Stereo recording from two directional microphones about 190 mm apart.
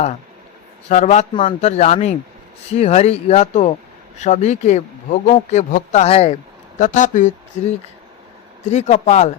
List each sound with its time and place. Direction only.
0.9 s speech: 35° left (ahead or behind)
8.7 s speech: 35° left (ahead or behind)